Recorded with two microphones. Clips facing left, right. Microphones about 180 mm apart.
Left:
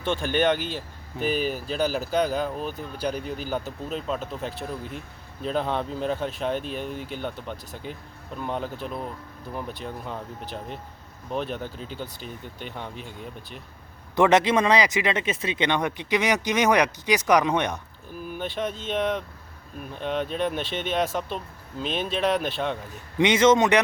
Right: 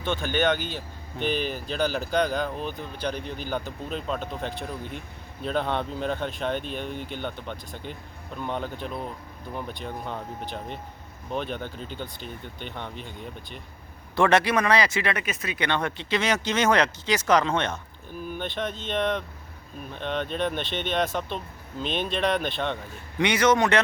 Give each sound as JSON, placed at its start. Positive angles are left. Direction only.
{"t": 0.1, "sound": "speech", "side_deg": 5}
{"t": 14.2, "sound": "speech", "side_deg": 20}
{"t": 23.1, "sound": "speech", "side_deg": 20}